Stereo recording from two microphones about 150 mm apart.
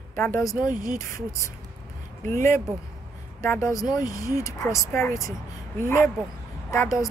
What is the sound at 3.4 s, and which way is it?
A woman's voice, 20° left (ahead or behind).